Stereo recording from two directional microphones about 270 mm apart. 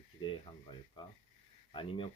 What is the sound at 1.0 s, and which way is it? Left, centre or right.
Speech, centre.